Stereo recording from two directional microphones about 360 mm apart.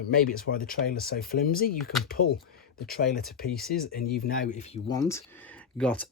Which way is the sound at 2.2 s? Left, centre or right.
Left.